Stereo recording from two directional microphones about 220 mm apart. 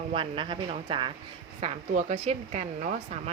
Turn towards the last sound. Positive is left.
turn(degrees=-35)  # may be behind; listen again after turning